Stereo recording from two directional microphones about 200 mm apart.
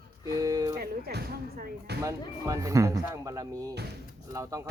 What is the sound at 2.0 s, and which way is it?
Speech, 15° right (ahead or behind).